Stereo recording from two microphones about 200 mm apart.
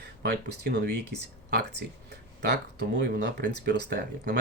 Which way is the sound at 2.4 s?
60° right (ahead or behind).